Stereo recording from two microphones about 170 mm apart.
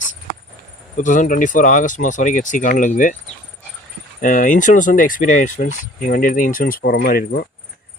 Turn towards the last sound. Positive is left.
turn(degrees=65)  # may be behind; listen again after turning